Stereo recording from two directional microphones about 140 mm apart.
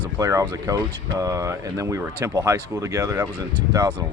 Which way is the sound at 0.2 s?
25° right (ahead or behind).